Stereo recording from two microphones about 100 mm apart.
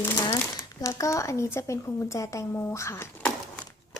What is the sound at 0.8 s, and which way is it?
Speech, 30° left (ahead or behind).